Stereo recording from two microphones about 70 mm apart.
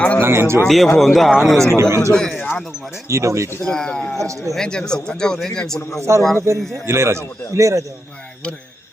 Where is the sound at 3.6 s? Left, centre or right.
Centre.